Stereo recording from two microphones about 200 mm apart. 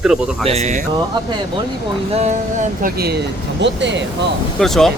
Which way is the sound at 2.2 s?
35° right (ahead or behind).